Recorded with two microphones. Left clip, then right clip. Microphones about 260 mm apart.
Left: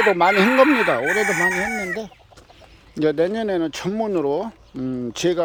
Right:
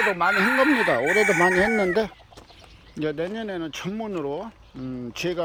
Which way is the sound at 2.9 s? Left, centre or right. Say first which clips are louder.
Left 8 dB; left.